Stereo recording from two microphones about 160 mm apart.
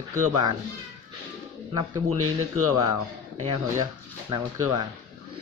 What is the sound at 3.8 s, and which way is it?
Speech, 25° right (ahead or behind).